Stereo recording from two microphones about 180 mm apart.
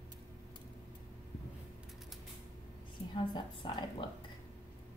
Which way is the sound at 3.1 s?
25° left (ahead or behind).